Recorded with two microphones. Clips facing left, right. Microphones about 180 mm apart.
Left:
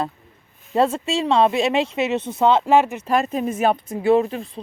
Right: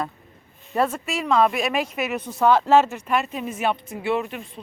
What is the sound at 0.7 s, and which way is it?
Speech, 25° left (ahead or behind).